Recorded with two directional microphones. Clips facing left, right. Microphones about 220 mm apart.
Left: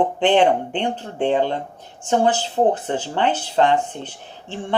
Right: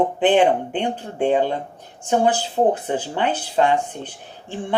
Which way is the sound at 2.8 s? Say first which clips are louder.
Left 1 dB; 10° right (ahead or behind).